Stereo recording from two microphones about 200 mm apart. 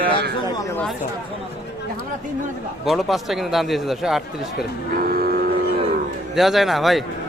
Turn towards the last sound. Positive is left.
turn(degrees=0)  # may be behind; listen again after turning